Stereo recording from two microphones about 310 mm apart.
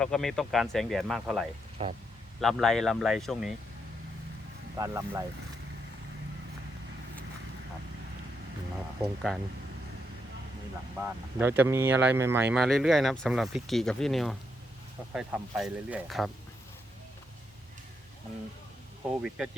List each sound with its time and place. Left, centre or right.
0.0 s speech: centre
1.8 s speech: centre
2.4 s speech: centre
4.8 s speech: centre
9.0 s speech: centre
11.0 s speech: centre